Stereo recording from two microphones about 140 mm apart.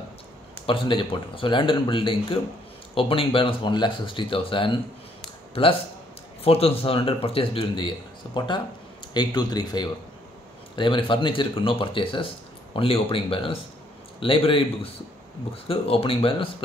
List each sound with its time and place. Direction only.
0.7 s speech: 35° left (ahead or behind)
9.1 s speech: 30° left (ahead or behind)